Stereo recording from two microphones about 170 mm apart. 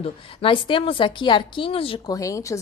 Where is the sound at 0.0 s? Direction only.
30° left (ahead or behind).